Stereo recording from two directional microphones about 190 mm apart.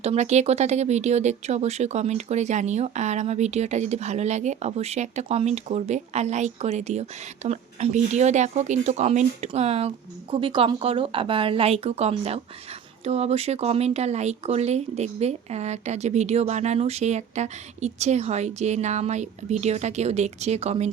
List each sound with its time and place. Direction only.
0.0 s speech: 35° right (ahead or behind)